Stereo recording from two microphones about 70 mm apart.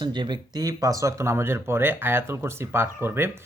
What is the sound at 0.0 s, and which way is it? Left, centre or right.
Speech, right.